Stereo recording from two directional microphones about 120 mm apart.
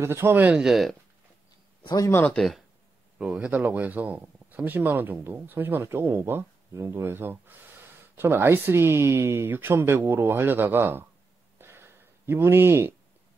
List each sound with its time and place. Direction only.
0.0 s speech: 20° right (ahead or behind); by 0.9 s centre (ahead or behind)
2.0 s speech: 25° left (ahead or behind)
2.2 s speech: centre (ahead or behind)
3.2 s speech: 10° right (ahead or behind)
11.5 s a sound: 20° right (ahead or behind)